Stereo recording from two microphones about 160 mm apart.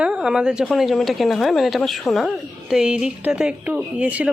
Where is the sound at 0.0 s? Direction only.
5° right (ahead or behind).